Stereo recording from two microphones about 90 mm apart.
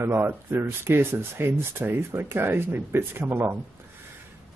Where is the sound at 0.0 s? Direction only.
30° right (ahead or behind).